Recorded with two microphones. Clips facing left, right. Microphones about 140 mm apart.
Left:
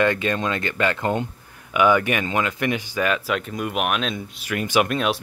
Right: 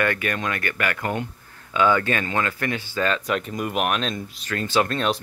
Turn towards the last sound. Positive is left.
turn(degrees=10)  # may be behind; listen again after turning